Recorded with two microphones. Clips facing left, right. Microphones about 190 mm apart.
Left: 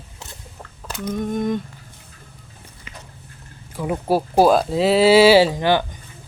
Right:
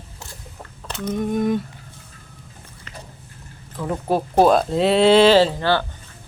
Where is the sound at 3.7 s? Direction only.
10° left (ahead or behind).